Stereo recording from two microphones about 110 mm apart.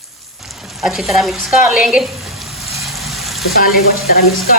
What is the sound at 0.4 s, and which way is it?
Frying, centre (ahead or behind).